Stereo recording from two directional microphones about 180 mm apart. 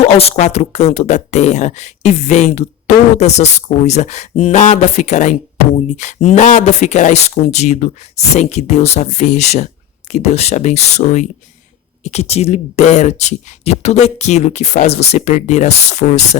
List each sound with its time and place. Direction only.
0.0 s speech: 35° left (ahead or behind)